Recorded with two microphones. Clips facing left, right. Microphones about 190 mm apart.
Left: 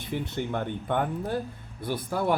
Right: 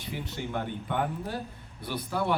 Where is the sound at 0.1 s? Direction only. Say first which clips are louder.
Left 4 dB; 50° left (ahead or behind).